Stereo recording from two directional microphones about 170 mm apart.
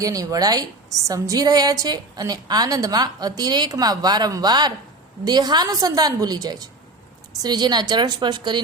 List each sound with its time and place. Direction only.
0.0 s a woman's voice: 20° right (ahead or behind)